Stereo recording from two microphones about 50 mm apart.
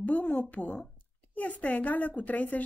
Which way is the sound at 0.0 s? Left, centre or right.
Left.